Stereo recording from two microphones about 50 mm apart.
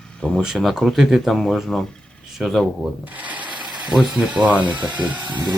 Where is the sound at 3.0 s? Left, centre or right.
Right.